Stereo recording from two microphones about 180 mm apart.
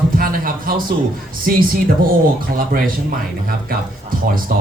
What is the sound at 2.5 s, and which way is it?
Speech, 50° right (ahead or behind).